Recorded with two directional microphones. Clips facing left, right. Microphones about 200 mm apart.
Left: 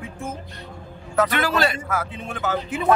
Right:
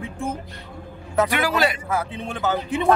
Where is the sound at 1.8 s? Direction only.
30° right (ahead or behind).